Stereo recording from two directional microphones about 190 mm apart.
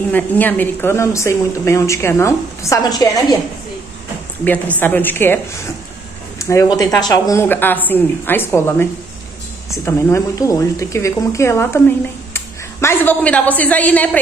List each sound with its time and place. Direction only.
0.1 s a woman's voice: 10° left (ahead or behind)
4.5 s a woman's voice: 10° left (ahead or behind)
9.8 s a woman's voice: 15° left (ahead or behind)